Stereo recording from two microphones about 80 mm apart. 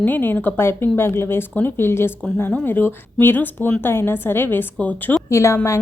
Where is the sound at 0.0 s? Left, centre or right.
Left.